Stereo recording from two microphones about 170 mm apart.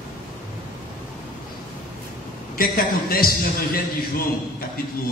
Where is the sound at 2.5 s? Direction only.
60° left (ahead or behind).